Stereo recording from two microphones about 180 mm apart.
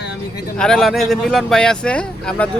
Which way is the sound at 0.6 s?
Centre (ahead or behind).